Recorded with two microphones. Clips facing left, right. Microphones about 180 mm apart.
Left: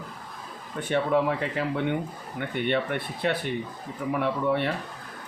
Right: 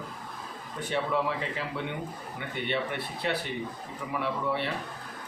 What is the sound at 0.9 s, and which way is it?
Speech, 55° left (ahead or behind).